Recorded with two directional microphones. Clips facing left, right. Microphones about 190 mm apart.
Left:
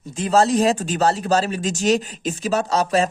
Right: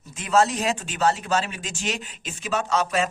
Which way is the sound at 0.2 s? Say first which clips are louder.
Left 5 dB; 35° left (ahead or behind).